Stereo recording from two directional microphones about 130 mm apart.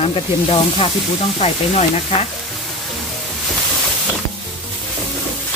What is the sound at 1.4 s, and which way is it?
Sizzle, 55° left (ahead or behind).